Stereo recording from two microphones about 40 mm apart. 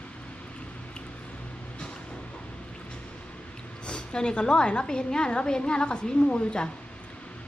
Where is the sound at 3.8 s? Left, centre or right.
Left.